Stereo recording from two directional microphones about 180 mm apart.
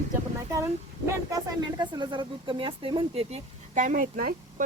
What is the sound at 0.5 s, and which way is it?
Speech, 15° right (ahead or behind).